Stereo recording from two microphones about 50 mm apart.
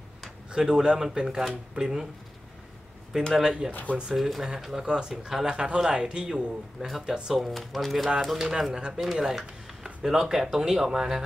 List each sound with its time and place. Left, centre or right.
0.5 s a man's voice: centre
3.1 s a man's voice: centre
3.7 s speech: left
4.1 s a man's voice: centre